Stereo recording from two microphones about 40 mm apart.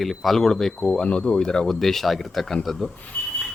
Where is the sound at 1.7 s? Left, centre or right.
Centre.